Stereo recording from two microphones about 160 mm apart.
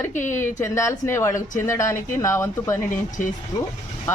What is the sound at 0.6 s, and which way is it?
Speech, 15° left (ahead or behind).